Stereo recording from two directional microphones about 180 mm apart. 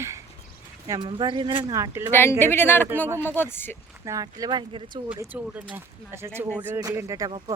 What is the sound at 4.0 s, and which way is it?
Speech, 20° right (ahead or behind).